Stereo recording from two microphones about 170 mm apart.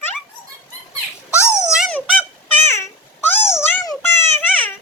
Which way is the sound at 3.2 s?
15° left (ahead or behind).